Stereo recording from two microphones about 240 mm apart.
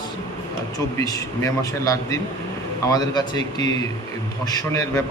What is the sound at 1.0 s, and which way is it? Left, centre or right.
A man's voice, centre.